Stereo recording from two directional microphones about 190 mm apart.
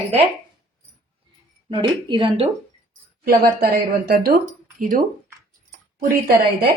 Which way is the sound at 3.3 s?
55° right (ahead or behind).